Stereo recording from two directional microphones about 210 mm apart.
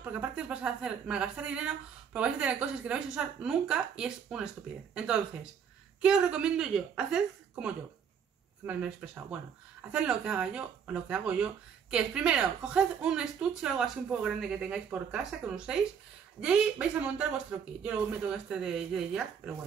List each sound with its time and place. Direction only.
0.0 s speech: 5° right (ahead or behind)